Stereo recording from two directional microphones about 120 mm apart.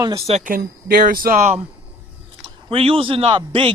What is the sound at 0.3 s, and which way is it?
Speech, 55° right (ahead or behind).